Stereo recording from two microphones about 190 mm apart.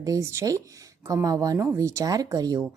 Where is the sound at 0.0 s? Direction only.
15° right (ahead or behind).